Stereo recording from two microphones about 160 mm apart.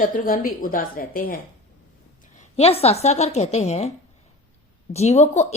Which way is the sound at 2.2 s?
45° left (ahead or behind).